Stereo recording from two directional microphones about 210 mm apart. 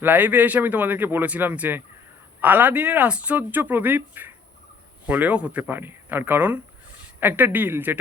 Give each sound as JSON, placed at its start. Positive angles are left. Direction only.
{"t": 0.0, "sound": "speech", "side_deg": -10}